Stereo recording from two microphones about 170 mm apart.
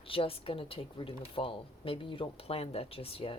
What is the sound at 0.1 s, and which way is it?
Speech, 35° left (ahead or behind).